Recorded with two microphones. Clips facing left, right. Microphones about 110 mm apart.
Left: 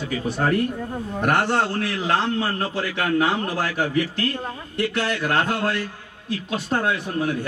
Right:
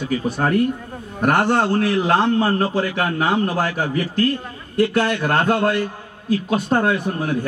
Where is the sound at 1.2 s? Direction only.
50° right (ahead or behind).